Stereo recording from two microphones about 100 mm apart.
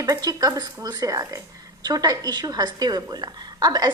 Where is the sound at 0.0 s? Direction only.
35° right (ahead or behind).